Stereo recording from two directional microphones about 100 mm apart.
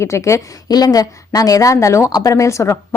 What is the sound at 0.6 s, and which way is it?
A woman's voice, 40° left (ahead or behind).